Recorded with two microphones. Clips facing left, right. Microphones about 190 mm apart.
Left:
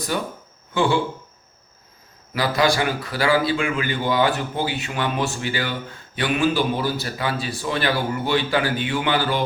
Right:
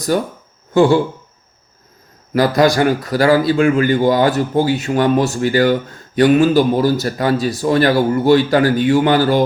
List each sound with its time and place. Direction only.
0.1 s a man's voice: 40° right (ahead or behind)
2.3 s a man's voice: 45° right (ahead or behind)